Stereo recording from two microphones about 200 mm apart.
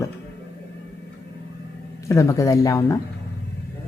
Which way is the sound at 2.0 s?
15° left (ahead or behind).